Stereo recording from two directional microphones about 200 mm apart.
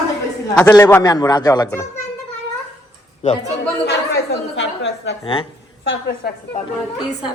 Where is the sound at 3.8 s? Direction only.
55° left (ahead or behind).